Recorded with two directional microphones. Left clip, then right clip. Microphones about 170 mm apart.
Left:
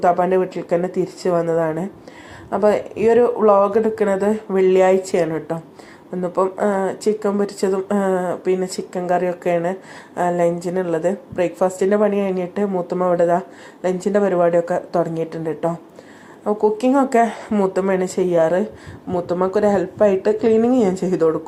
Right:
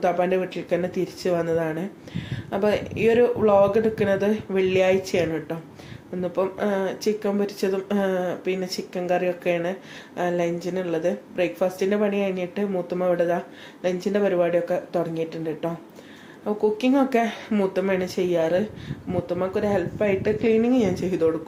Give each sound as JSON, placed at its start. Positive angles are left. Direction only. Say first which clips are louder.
{"t": 0.0, "sound": "speech", "louder": "left 6 dB", "side_deg": 10}
{"t": 19.1, "sound": "speech", "louder": "left 6 dB", "side_deg": 30}